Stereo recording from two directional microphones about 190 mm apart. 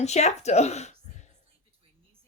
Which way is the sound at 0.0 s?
35° left (ahead or behind).